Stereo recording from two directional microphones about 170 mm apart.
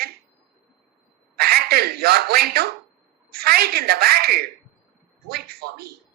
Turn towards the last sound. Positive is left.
turn(degrees=-65)  # may be behind; listen again after turning